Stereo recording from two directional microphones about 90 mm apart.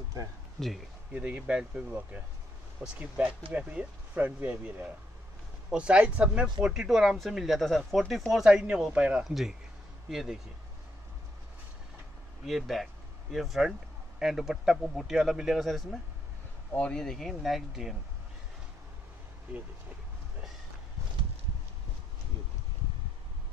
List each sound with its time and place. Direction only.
0.6 s speech: centre (ahead or behind)
1.1 s speech: 10° right (ahead or behind)
2.8 s speech: 25° right (ahead or behind)
3.5 s speech: 15° right (ahead or behind)
12.4 s speech: centre (ahead or behind)
16.7 s speech: 10° left (ahead or behind)